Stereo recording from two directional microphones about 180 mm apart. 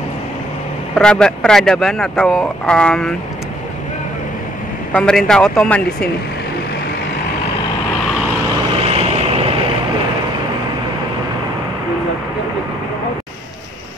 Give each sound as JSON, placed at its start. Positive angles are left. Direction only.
{"t": 0.9, "sound": "speech", "side_deg": 5}
{"t": 4.9, "sound": "speech", "side_deg": 5}
{"t": 8.7, "sound": "vehicle", "side_deg": -35}